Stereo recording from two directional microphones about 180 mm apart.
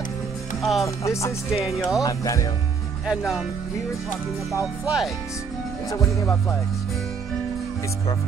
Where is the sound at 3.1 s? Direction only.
Centre (ahead or behind).